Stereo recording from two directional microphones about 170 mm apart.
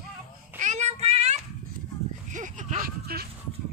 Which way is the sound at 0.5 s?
45° right (ahead or behind).